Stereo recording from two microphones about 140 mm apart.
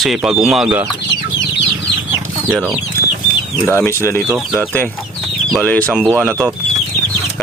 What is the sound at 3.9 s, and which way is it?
Speech, 20° left (ahead or behind).